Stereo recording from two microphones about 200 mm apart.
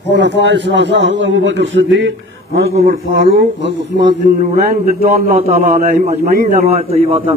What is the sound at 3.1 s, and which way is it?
Speech, 60° right (ahead or behind).